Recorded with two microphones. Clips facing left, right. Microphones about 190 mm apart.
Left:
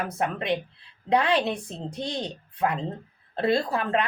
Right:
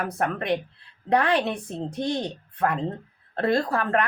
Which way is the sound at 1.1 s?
15° left (ahead or behind).